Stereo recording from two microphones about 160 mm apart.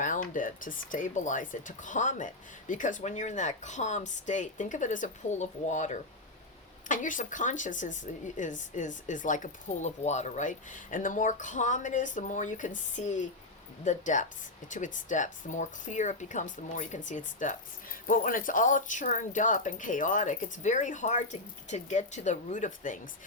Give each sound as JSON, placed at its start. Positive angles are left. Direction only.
{"t": 0.0, "sound": "speech", "side_deg": 55}